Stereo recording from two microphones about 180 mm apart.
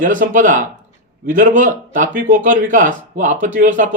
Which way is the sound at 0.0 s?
45° right (ahead or behind).